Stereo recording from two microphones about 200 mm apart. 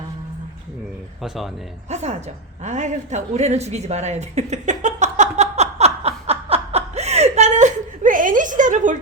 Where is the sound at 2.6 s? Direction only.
35° right (ahead or behind).